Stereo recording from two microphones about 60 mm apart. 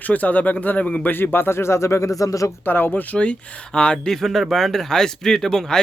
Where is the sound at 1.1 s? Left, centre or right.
Left.